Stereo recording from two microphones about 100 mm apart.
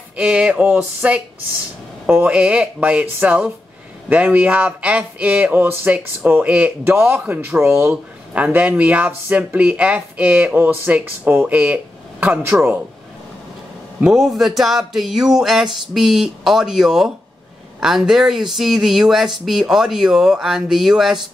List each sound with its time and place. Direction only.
0.2 s speech: 10° right (ahead or behind)
14.0 s speech: 5° right (ahead or behind)